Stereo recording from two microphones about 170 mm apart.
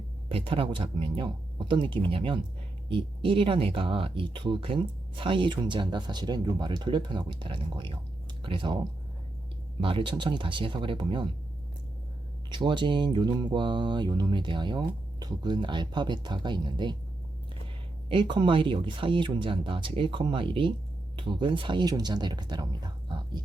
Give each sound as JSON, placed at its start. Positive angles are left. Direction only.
{"t": 0.3, "sound": "speech", "side_deg": -35}
{"t": 9.8, "sound": "speech", "side_deg": -30}
{"t": 12.5, "sound": "speech", "side_deg": -25}
{"t": 18.1, "sound": "speech", "side_deg": -30}